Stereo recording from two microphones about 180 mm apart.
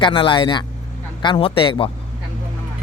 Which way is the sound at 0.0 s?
25° left (ahead or behind).